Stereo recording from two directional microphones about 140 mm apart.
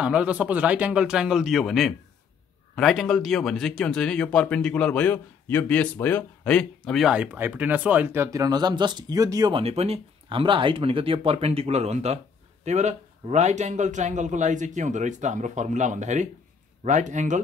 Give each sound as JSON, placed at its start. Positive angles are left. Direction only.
{"t": 0.0, "sound": "a man's voice", "side_deg": -10}
{"t": 9.5, "sound": "a man's voice", "side_deg": -45}